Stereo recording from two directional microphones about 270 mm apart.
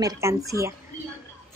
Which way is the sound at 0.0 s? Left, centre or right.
Centre.